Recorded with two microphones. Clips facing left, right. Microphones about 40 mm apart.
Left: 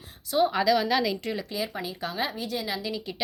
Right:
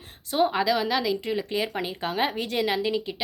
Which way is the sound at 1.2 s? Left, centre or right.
Right.